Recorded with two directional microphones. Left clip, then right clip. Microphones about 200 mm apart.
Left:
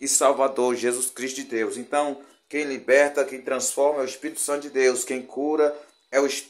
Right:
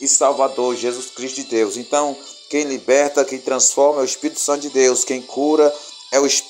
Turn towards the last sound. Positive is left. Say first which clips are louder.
# right 6 dB
turn(degrees=-20)  # may be behind; listen again after turning